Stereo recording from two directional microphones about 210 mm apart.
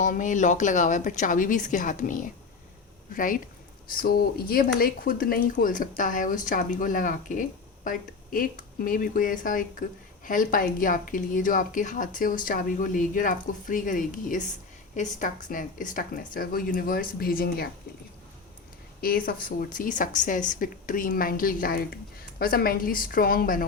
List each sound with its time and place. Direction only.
0.0 s speech: 35° left (ahead or behind)
19.0 s speech: 45° left (ahead or behind)